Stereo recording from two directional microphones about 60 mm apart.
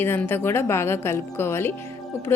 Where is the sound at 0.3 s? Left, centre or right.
Left.